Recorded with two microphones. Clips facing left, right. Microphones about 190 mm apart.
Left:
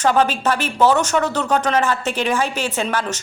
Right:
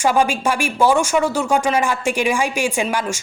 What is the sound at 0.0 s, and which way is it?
A man's voice, 10° right (ahead or behind).